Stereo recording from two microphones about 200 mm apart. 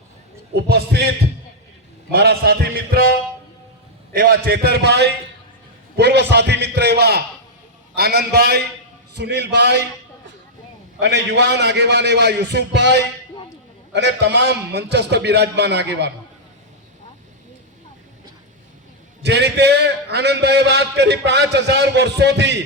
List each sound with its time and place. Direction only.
0.7 s a man's voice: 50° right (ahead or behind)
2.1 s a man's voice: 50° right (ahead or behind)
4.1 s a man's voice: 45° right (ahead or behind)
11.0 s a man's voice: 60° right (ahead or behind)
19.2 s a man's voice: 55° right (ahead or behind)